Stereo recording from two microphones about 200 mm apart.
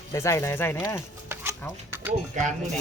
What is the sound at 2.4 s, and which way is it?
Speech, 35° right (ahead or behind).